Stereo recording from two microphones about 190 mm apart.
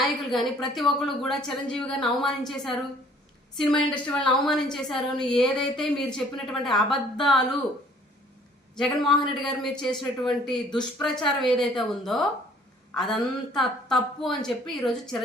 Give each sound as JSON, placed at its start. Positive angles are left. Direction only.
{"t": 0.3, "sound": "a woman's voice", "side_deg": 0}
{"t": 8.7, "sound": "a woman's voice", "side_deg": 0}